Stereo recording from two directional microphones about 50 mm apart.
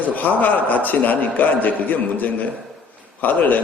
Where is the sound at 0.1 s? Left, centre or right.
Left.